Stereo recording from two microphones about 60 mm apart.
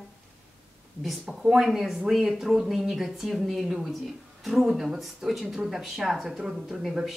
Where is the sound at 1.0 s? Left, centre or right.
Centre.